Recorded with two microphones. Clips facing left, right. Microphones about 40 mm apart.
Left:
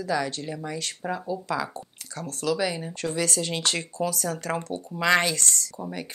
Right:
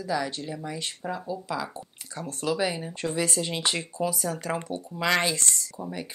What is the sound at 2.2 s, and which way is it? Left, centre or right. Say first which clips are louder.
Speech: left 1 dB; right.